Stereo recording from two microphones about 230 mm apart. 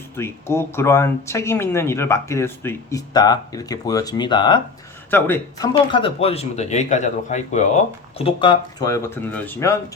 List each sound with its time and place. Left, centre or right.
0.2 s speech: centre